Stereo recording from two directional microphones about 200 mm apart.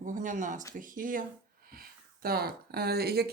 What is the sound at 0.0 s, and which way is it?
Speech, 40° right (ahead or behind).